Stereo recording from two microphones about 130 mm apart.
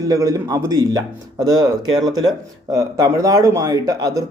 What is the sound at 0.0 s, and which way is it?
Speech, 30° right (ahead or behind).